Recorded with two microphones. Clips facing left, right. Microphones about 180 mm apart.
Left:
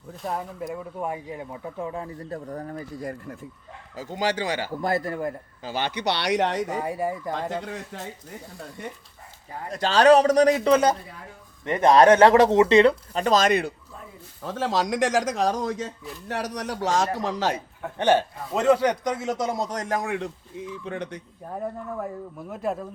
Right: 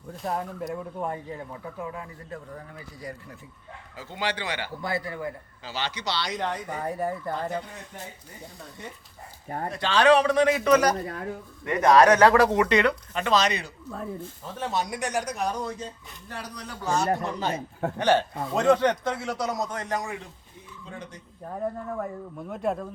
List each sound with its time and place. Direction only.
0.1 s a man's voice: centre (ahead or behind)
1.8 s a man's voice: 30° left (ahead or behind); by 6.7 s 80° left
6.7 s speech: 10° left (ahead or behind)
7.6 s speech: 90° left
9.7 s a man's voice: 40° left (ahead or behind); by 13.7 s 55° left (ahead or behind)
14.4 s speech: 90° left
16.3 s a man's voice: 75° left (ahead or behind)
18.0 s speech: 15° left (ahead or behind)
18.5 s a man's voice: 5° left (ahead or behind); by 21.2 s 70° left (ahead or behind)
22.4 s a man's voice: centre (ahead or behind)